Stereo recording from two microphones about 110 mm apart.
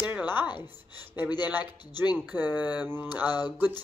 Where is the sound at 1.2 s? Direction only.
40° left (ahead or behind).